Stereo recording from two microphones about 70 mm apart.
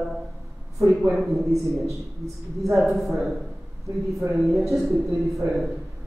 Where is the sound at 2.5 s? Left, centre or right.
Centre.